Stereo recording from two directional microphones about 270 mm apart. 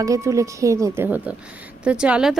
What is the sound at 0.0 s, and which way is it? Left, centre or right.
A woman's voice, centre.